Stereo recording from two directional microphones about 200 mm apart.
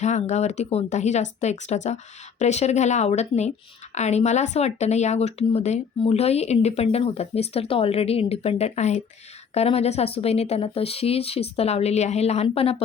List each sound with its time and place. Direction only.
0.0 s speech: 35° left (ahead or behind)